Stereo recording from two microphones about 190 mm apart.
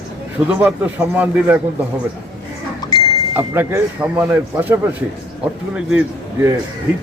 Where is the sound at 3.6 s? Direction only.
10° right (ahead or behind).